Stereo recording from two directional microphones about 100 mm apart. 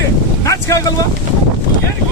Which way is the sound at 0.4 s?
35° left (ahead or behind).